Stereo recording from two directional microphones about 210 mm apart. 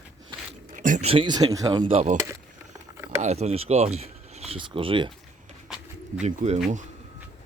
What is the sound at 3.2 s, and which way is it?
Speech, 30° right (ahead or behind).